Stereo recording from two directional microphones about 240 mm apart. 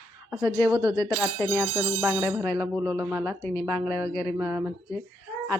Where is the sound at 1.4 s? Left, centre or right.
Centre.